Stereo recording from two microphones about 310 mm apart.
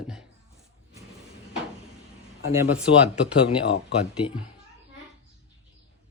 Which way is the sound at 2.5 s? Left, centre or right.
Centre.